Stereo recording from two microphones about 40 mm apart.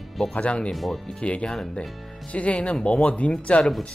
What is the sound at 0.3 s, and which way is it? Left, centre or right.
Speech, left.